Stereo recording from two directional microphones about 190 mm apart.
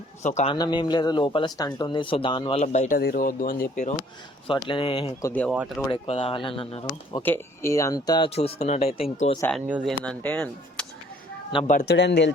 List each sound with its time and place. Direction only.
0.2 s speech: 40° left (ahead or behind)
0.5 s speech: 25° left (ahead or behind)
2.6 s speech: 45° left (ahead or behind)
4.4 s speech: 25° left (ahead or behind)
5.2 s speech: 10° left (ahead or behind)
5.5 s speech: 5° right (ahead or behind)
5.8 s speech: 30° left (ahead or behind)
7.2 s speech: 10° left (ahead or behind); by 9.4 s 35° left (ahead or behind)
9.5 s speech: 5° right (ahead or behind)
11.7 s speech: 55° left (ahead or behind)